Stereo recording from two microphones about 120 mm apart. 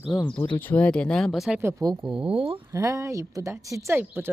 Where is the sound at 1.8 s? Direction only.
35° right (ahead or behind).